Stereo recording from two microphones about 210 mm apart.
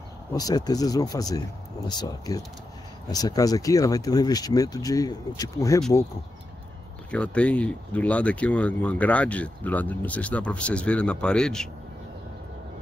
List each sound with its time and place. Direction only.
0.3 s speech: 15° left (ahead or behind)
7.1 s speech: 5° left (ahead or behind)